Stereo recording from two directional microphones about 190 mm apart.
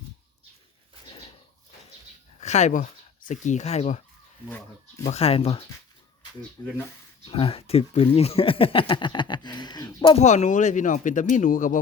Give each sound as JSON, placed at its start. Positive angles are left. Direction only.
{"t": 2.4, "sound": "speech", "side_deg": 35}
{"t": 5.0, "sound": "speech", "side_deg": 35}
{"t": 10.2, "sound": "speech", "side_deg": 40}